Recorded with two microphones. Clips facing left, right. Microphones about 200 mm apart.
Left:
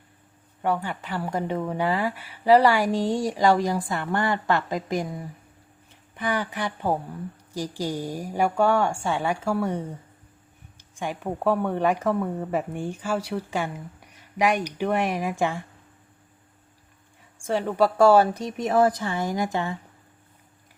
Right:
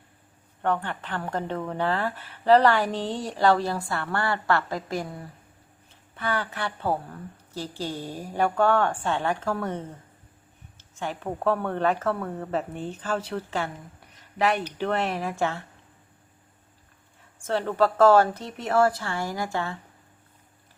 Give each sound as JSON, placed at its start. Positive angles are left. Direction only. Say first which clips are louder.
{"t": 0.6, "sound": "speech", "louder": "left 1 dB", "side_deg": 10}
{"t": 17.4, "sound": "speech", "louder": "left 1 dB", "side_deg": 10}